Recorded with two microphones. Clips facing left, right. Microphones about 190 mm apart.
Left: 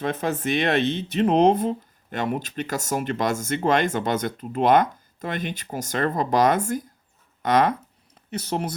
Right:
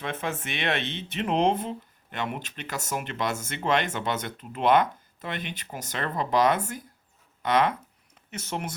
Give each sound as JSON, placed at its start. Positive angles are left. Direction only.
{"t": 0.0, "sound": "speech", "side_deg": 40}